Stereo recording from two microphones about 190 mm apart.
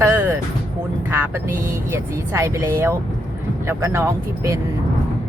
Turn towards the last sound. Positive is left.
turn(degrees=-15)  # may be behind; listen again after turning